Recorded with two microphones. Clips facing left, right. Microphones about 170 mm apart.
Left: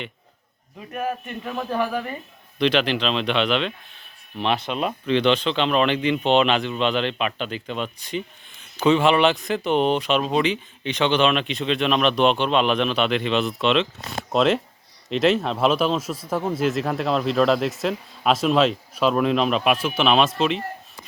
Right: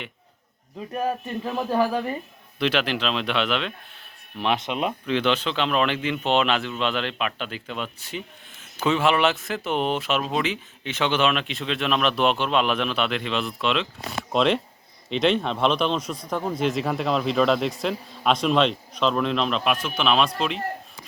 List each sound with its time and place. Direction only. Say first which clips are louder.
0.9 s speech: right 1 dB; 30° right (ahead or behind)
2.6 s speech: left 3 dB; 5° right (ahead or behind)